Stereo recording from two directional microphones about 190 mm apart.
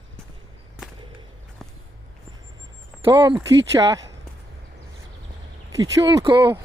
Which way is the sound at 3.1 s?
25° right (ahead or behind).